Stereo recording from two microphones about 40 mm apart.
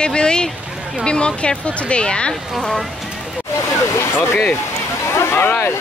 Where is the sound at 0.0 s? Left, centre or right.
Left.